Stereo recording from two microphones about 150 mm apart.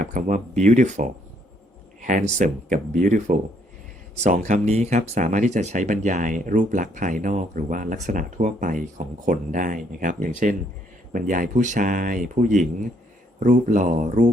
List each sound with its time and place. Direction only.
0.0 s speech: 60° right (ahead or behind)